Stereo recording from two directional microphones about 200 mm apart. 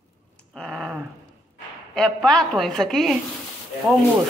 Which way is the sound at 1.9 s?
5° left (ahead or behind).